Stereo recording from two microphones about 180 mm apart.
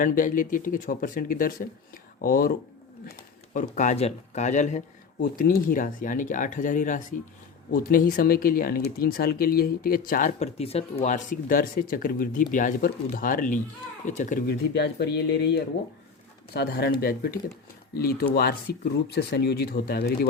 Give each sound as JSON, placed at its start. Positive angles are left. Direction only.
{"t": 0.0, "sound": "speech", "side_deg": 50}
{"t": 3.5, "sound": "speech", "side_deg": 40}
{"t": 5.2, "sound": "speech", "side_deg": 50}
{"t": 14.7, "sound": "speech", "side_deg": 70}
{"t": 16.6, "sound": "speech", "side_deg": 60}